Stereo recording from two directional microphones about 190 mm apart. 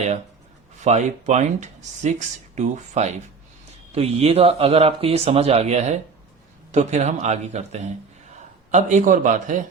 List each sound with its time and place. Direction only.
0.9 s speech: 35° right (ahead or behind)